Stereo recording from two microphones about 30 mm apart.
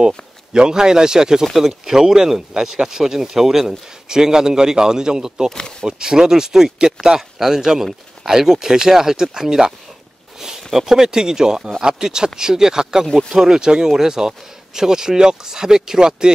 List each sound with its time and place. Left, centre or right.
0.5 s speech: right
1.4 s speech: centre
1.7 s speech: centre
5.5 s speech: left
5.9 s speech: right